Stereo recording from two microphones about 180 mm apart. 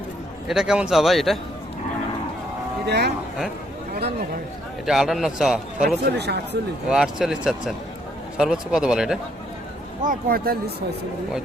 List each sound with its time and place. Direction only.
0.4 s a man's voice: centre (ahead or behind)
2.8 s speech: 70° right (ahead or behind)
4.9 s a man's voice: centre (ahead or behind)
6.1 s speech: 70° right (ahead or behind)
6.9 s a man's voice: centre (ahead or behind)
10.0 s speech: 50° right (ahead or behind)